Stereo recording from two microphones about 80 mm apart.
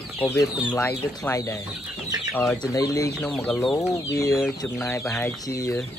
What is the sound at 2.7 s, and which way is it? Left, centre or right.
Speech, left.